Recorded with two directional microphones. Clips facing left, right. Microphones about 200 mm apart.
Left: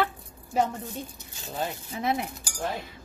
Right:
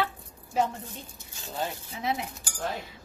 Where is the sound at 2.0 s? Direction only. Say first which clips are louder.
Left 3 dB; 55° left (ahead or behind).